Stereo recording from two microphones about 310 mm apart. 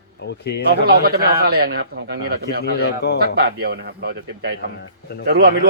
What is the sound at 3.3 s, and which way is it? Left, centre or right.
Speech, right.